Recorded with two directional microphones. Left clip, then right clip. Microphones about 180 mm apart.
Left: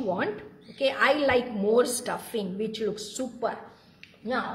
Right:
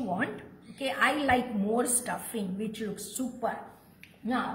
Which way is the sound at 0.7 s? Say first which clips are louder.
Left 4 dB; 60° left (ahead or behind).